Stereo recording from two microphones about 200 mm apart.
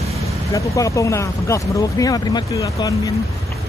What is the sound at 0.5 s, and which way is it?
Speech, 15° left (ahead or behind).